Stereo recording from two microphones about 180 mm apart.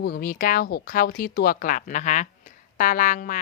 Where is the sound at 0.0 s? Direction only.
55° left (ahead or behind).